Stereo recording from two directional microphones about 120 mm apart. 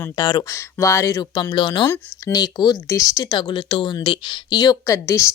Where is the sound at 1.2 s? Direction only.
40° left (ahead or behind).